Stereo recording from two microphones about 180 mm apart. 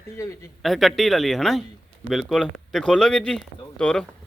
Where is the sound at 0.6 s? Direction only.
Centre (ahead or behind).